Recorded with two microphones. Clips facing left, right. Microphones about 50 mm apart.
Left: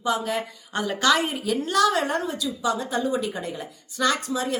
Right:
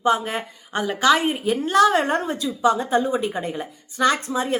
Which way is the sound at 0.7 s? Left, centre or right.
Centre.